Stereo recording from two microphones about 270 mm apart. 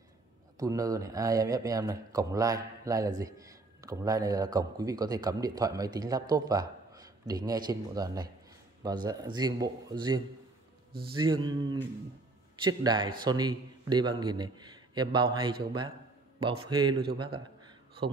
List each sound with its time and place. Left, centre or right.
0.6 s speech: centre